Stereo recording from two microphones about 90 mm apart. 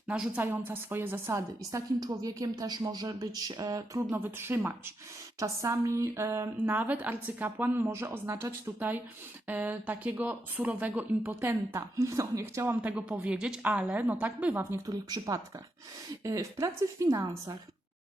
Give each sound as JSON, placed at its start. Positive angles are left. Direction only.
{"t": 0.3, "sound": "speech", "side_deg": -25}
{"t": 2.0, "sound": "speech", "side_deg": -45}
{"t": 4.1, "sound": "speech", "side_deg": -25}
{"t": 6.7, "sound": "speech", "side_deg": -20}
{"t": 9.5, "sound": "speech", "side_deg": -20}
{"t": 12.8, "sound": "a woman's voice", "side_deg": -15}
{"t": 14.8, "sound": "speech", "side_deg": -45}